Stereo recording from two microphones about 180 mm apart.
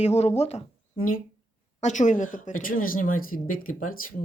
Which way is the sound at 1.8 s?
40° left (ahead or behind).